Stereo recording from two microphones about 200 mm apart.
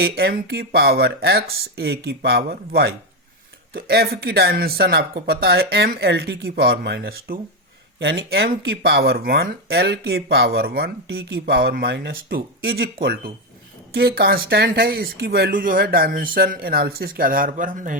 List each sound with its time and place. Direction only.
0.0 s speech: 50° right (ahead or behind)
7.9 s speech: 65° right (ahead or behind); by 17.9 s 40° right (ahead or behind)